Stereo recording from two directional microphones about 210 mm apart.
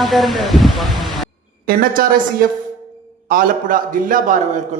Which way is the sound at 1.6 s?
45° right (ahead or behind).